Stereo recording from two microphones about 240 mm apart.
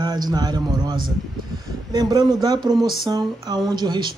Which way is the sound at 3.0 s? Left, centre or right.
Centre.